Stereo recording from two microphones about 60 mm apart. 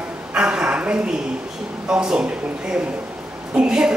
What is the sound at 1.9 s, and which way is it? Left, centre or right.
Speech, centre.